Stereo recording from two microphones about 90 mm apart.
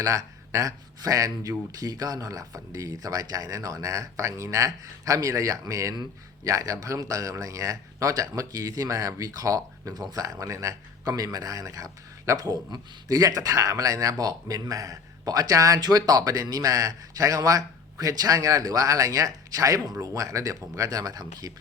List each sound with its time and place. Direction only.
0.0 s speech: 35° right (ahead or behind)